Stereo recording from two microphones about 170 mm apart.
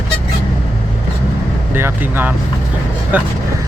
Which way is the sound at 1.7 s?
10° right (ahead or behind).